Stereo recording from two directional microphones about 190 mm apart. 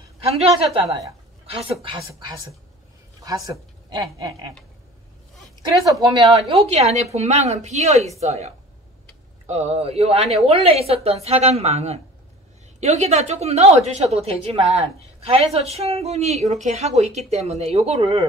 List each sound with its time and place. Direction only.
0.2 s a woman's voice: 30° right (ahead or behind)
0.8 s speech: 15° right (ahead or behind)
1.4 s a woman's voice: 30° right (ahead or behind)
5.6 s a woman's voice: 20° right (ahead or behind)
6.5 s a woman's voice: 35° right (ahead or behind)
9.5 s a woman's voice: 35° right (ahead or behind)